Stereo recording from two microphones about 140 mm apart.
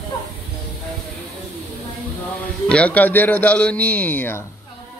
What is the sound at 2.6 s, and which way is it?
Speech, 10° left (ahead or behind).